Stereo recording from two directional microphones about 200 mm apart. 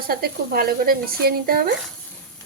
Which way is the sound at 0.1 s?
50° right (ahead or behind).